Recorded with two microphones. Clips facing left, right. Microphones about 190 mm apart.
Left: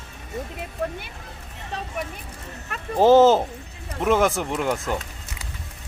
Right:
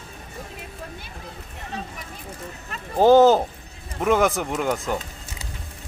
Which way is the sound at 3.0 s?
Centre (ahead or behind).